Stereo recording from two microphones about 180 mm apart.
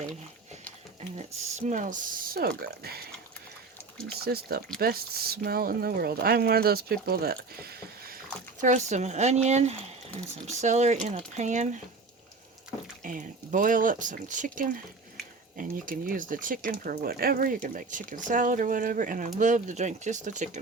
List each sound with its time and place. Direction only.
1.1 s speech: 40° right (ahead or behind); by 3.0 s 60° right (ahead or behind)
4.2 s speech: 60° right (ahead or behind)
8.6 s speech: 40° right (ahead or behind)
13.0 s speech: 45° right (ahead or behind)